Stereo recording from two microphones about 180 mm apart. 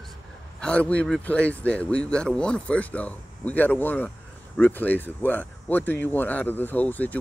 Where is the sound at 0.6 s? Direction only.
5° left (ahead or behind).